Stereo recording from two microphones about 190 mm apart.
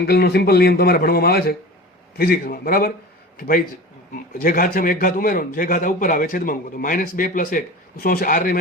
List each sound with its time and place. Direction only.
0.0 s a man's voice: 55° left (ahead or behind)